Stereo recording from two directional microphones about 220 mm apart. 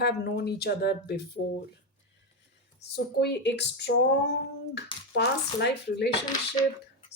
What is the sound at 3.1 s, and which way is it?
Speech, 50° left (ahead or behind).